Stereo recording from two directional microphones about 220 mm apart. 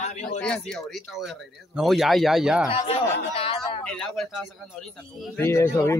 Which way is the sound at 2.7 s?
25° left (ahead or behind).